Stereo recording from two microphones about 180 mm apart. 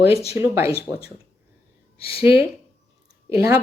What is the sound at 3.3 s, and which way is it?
Speech, 15° right (ahead or behind).